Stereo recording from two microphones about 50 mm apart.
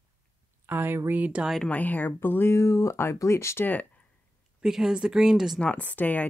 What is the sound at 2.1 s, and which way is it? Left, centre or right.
Speech, left.